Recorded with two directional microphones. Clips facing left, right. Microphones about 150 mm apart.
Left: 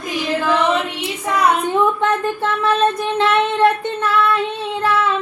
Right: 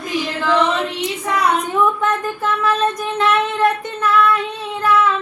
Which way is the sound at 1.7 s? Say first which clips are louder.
Left 1 dB; 30° left (ahead or behind).